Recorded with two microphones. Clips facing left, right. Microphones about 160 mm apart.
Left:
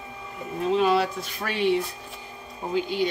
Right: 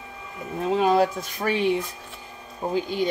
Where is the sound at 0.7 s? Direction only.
45° right (ahead or behind).